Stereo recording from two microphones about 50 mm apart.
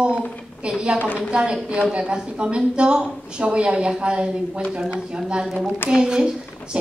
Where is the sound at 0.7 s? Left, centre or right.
Centre.